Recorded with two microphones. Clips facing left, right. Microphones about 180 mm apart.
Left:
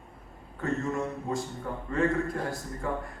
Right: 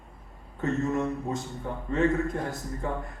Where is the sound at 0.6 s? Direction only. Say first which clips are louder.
Right 3 dB; 20° right (ahead or behind).